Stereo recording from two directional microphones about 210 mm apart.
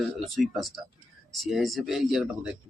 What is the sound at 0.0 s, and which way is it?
Speech, centre (ahead or behind).